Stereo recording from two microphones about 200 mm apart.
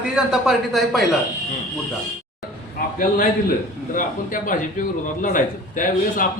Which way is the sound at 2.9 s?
45° left (ahead or behind).